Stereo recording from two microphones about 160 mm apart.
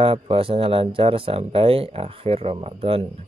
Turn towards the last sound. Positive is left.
turn(degrees=-40)  # may be behind; listen again after turning